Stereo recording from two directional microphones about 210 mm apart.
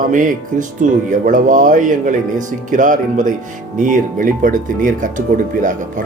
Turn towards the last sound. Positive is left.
turn(degrees=-40)  # may be behind; listen again after turning